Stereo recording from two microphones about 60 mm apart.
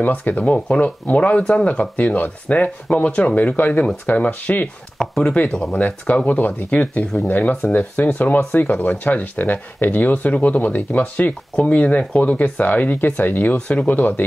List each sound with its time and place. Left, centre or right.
0.0 s speech: left
4.9 s speech: centre
5.8 s speech: left